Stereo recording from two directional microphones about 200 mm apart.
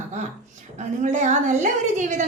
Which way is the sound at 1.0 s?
35° right (ahead or behind).